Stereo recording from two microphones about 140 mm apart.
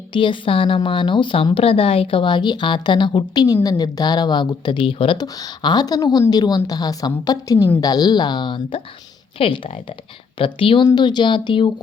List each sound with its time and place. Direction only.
0.1 s a woman's voice: 35° left (ahead or behind)